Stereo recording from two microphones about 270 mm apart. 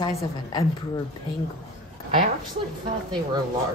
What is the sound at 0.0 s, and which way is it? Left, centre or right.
Speech, left.